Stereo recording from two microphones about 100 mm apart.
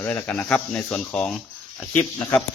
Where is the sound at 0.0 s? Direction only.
15° left (ahead or behind).